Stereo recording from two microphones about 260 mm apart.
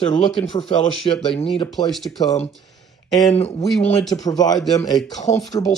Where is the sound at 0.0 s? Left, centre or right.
Left.